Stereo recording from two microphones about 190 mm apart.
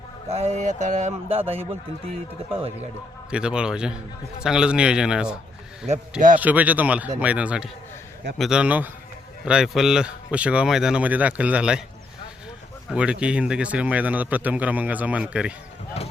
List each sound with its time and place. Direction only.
0.3 s speech: 35° right (ahead or behind)
3.2 s a man's voice: 5° right (ahead or behind)
5.9 s a man's voice: 40° right (ahead or behind)
6.4 s a man's voice: 10° right (ahead or behind)
12.9 s a man's voice: 5° right (ahead or behind)